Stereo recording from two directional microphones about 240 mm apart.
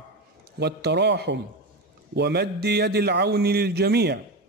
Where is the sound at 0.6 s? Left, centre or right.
Right.